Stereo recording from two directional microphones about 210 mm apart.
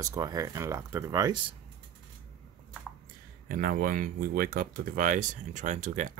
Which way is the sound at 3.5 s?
45° right (ahead or behind).